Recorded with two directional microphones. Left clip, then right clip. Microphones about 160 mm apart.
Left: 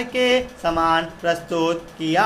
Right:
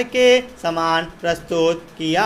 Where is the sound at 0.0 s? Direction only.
30° right (ahead or behind).